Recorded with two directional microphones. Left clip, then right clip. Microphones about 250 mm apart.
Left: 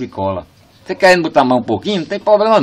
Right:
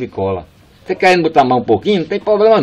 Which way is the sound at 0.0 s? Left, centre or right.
Centre.